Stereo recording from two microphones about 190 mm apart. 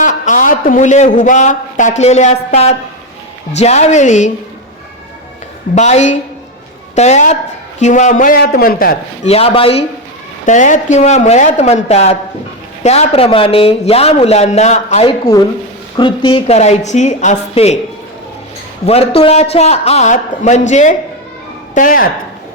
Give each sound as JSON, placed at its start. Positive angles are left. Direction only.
{"t": 0.0, "sound": "a man's voice", "side_deg": 40}
{"t": 5.7, "sound": "a man's voice", "side_deg": 35}
{"t": 9.2, "sound": "a man's voice", "side_deg": 30}
{"t": 10.4, "sound": "a man's voice", "side_deg": 40}
{"t": 18.9, "sound": "a man's voice", "side_deg": 30}